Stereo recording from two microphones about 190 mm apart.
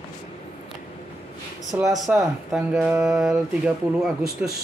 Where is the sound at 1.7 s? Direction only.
10° right (ahead or behind).